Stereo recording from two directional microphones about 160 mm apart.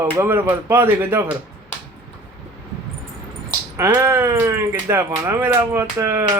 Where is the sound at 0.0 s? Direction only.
15° right (ahead or behind).